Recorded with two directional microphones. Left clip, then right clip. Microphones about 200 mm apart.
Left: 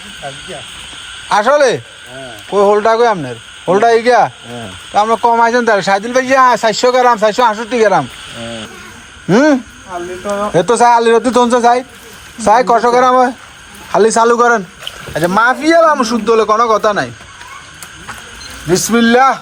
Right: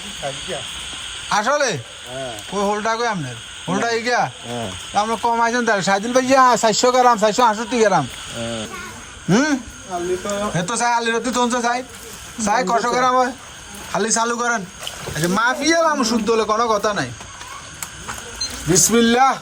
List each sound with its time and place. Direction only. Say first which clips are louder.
1.3 s speech: left 9 dB; 10° right (ahead or behind)
9.3 s a man's voice: left 9 dB; 10° right (ahead or behind)
18.7 s a man's voice: left 5 dB; centre (ahead or behind)